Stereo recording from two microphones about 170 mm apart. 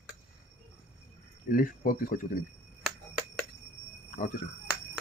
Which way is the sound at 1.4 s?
55° left (ahead or behind).